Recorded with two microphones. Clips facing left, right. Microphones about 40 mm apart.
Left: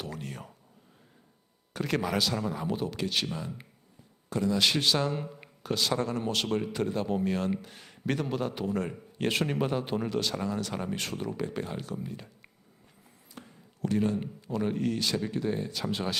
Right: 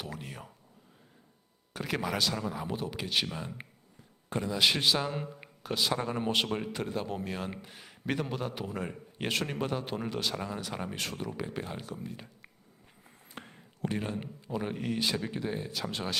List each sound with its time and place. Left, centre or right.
0.0 s a sound: centre
1.7 s a man's voice: centre
3.3 s speech: right
4.4 s speech: centre
6.8 s a man's voice: centre
13.1 s a sound: right
13.8 s speech: centre